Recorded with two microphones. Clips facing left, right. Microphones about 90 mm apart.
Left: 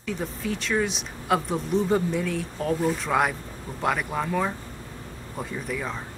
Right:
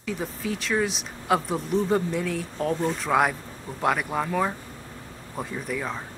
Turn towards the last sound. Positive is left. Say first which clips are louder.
# right 1 dB
turn(degrees=0)  # may be behind; listen again after turning